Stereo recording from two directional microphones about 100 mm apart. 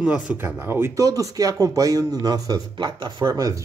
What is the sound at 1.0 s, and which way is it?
Speech, 35° right (ahead or behind).